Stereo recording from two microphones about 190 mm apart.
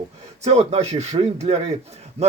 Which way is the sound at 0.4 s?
35° right (ahead or behind).